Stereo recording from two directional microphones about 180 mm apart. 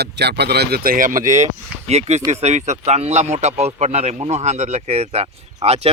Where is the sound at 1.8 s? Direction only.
40° right (ahead or behind).